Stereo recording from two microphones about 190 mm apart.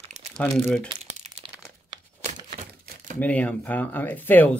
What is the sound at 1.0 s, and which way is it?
Crumpling, 35° right (ahead or behind).